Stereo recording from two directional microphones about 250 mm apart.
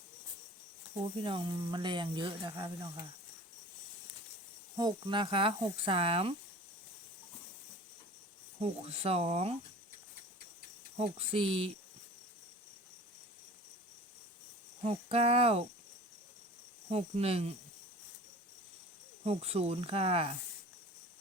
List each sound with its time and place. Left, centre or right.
1.1 s speech: right
4.8 s speech: centre
8.6 s speech: right
10.9 s speech: right
14.8 s speech: right
16.9 s speech: right
19.2 s speech: right